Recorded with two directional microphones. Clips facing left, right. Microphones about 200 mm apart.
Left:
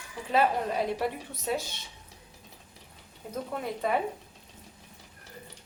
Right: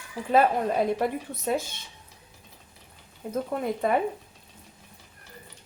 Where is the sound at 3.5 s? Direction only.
45° right (ahead or behind).